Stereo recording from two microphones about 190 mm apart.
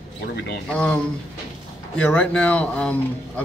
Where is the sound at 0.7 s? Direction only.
5° left (ahead or behind).